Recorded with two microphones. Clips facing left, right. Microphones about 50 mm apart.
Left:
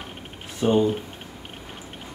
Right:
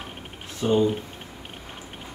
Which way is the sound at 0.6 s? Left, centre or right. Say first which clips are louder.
Left 1 dB; centre.